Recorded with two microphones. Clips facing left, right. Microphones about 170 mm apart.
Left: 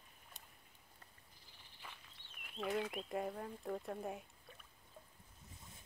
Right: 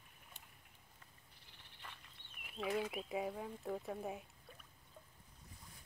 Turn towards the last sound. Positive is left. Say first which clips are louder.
# even
turn(degrees=0)  # may be behind; listen again after turning